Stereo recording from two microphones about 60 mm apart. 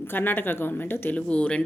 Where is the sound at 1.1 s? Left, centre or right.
Left.